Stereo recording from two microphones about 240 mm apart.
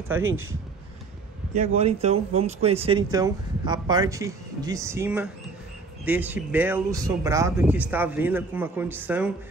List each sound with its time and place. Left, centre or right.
0.2 s speech: right
1.8 s speech: right; by 9.3 s centre